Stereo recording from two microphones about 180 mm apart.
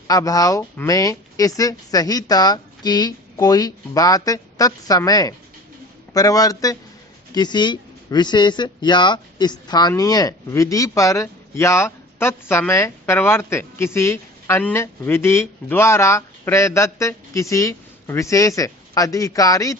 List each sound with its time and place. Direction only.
0.1 s speech: 20° left (ahead or behind)